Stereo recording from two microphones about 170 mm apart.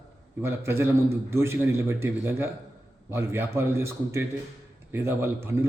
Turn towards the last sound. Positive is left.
turn(degrees=-15)  # may be behind; listen again after turning